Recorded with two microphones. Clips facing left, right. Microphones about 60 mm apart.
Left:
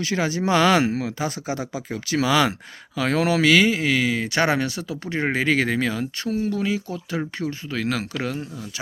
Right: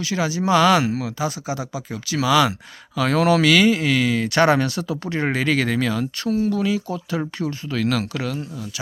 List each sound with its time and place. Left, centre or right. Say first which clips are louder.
0.0 s speech: right 1 dB; left
2.9 s speech: right 3 dB; centre
8.2 s speech: right 1 dB; left